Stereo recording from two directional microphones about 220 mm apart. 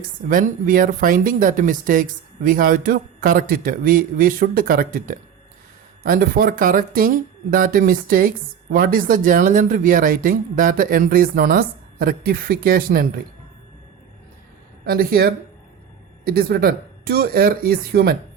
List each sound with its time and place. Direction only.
0.3 s speech: 40° right (ahead or behind)
14.8 s speech: 45° right (ahead or behind)